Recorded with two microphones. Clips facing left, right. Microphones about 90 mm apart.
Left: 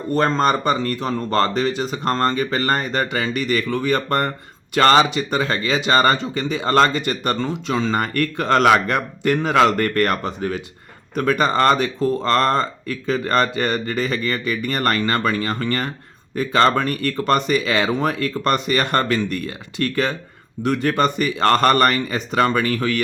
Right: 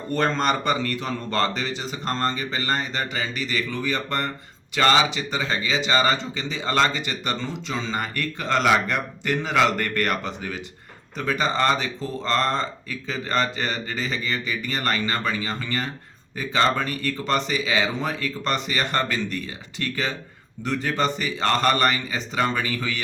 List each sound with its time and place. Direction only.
0.1 s speech: 35° left (ahead or behind)
11.1 s speech: 55° left (ahead or behind)